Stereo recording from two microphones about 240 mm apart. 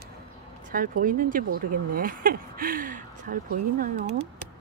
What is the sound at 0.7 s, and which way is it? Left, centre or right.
Speech, right.